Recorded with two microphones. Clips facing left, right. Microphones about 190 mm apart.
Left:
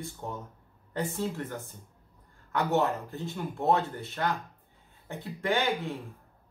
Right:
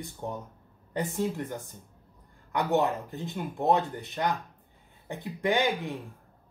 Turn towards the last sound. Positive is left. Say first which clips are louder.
# right 2 dB
turn(degrees=-15)  # may be behind; listen again after turning